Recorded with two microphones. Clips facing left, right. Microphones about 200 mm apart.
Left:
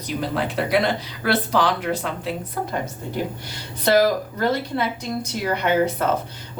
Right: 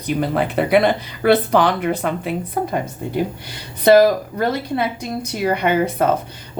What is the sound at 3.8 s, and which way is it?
Speech, 55° right (ahead or behind).